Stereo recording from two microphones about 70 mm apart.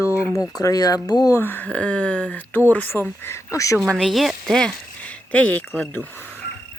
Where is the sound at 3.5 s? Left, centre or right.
Left.